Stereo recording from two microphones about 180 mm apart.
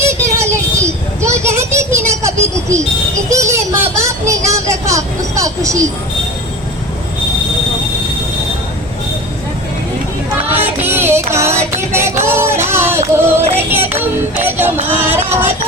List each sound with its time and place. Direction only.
0.0 s a sound: 15° right (ahead or behind)
4.0 s vehicle: 15° right (ahead or behind)
10.5 s music: 10° right (ahead or behind)